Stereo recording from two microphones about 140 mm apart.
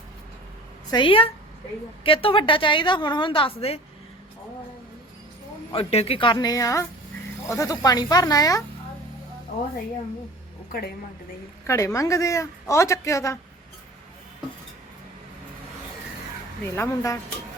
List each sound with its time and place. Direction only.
0.9 s a woman's voice: 35° left (ahead or behind)
5.7 s a woman's voice: 45° left (ahead or behind); by 8.6 s 25° left (ahead or behind)
11.6 s a woman's voice: 20° left (ahead or behind)
16.7 s a woman's voice: 20° left (ahead or behind)